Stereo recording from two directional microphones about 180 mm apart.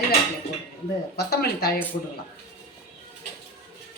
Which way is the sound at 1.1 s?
60° left (ahead or behind).